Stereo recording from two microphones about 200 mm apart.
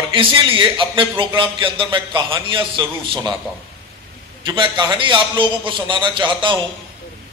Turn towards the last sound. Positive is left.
turn(degrees=-25)  # may be behind; listen again after turning